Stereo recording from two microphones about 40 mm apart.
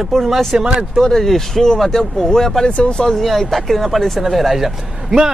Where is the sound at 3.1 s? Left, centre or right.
Centre.